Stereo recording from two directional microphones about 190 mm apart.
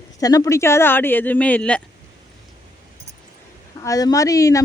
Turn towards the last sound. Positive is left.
turn(degrees=15)  # may be behind; listen again after turning